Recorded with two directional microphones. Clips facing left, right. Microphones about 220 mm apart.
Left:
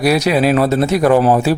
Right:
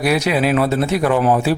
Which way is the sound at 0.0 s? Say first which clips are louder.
Left 3 dB; 40° left (ahead or behind).